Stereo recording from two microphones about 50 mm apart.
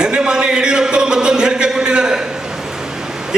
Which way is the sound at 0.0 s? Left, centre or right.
Centre.